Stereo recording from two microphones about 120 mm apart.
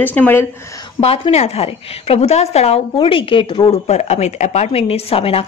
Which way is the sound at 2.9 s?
45° left (ahead or behind).